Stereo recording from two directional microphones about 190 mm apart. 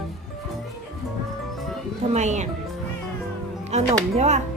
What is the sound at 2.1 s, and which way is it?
Speech, 40° right (ahead or behind).